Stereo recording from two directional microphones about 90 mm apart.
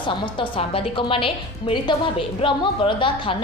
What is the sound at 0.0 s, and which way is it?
A woman's voice, 70° left (ahead or behind).